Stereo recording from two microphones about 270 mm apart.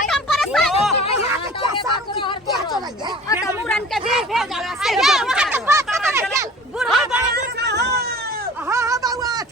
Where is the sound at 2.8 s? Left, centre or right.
Centre.